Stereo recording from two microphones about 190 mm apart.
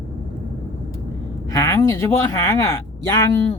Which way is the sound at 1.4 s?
15° left (ahead or behind).